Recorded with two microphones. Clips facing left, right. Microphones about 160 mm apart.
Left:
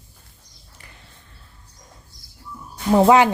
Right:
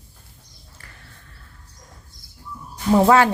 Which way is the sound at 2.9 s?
15° left (ahead or behind).